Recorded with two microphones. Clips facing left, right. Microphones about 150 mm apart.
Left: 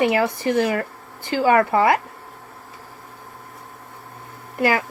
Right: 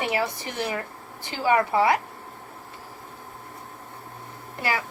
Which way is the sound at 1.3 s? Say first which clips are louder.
Left 5 dB; 55° left (ahead or behind).